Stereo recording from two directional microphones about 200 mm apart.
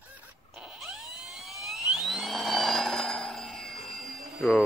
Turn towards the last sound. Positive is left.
turn(degrees=0)  # may be behind; listen again after turning